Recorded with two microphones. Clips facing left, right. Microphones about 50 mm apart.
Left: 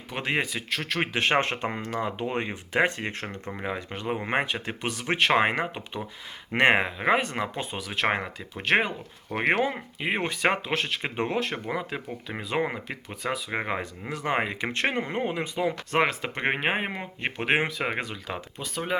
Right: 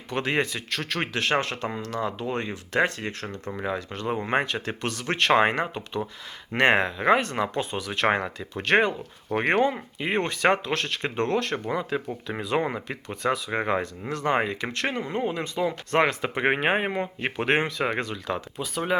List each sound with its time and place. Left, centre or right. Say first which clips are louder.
0.1 s speech: right 2 dB; centre
1.1 s speech: left 1 dB; left
16.0 s speech: right 3 dB; centre